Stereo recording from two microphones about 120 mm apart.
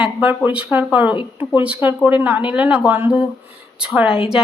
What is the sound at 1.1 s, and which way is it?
Speech, 45° left (ahead or behind).